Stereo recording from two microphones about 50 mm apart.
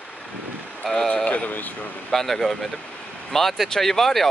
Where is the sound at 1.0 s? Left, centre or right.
Left.